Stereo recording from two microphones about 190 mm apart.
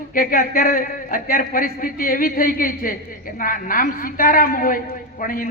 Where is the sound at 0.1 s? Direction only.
45° left (ahead or behind).